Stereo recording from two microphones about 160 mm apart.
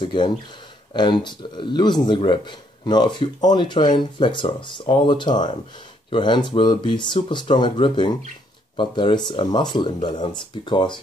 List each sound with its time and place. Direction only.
0.0 s speech: 30° left (ahead or behind)